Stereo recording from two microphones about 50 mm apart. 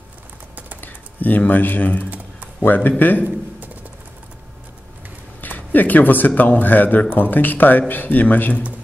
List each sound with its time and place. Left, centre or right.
0.7 s a man's voice: left
3.3 s a sound: right
5.4 s a man's voice: left